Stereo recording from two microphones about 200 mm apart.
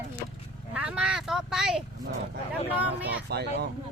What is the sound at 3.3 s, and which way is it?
Speech, 55° right (ahead or behind).